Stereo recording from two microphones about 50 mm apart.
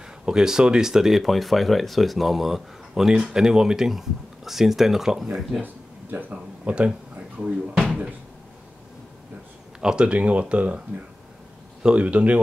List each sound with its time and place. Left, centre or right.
0.2 s speech: centre
5.6 s a sound: right
6.3 s speech: right
6.9 s speech: centre
9.8 s speech: centre
11.8 s speech: right